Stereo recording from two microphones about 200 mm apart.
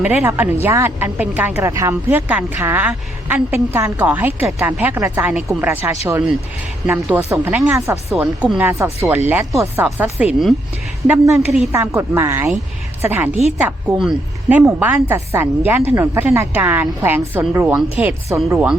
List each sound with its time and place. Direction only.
0.0 s a woman's voice: 10° right (ahead or behind)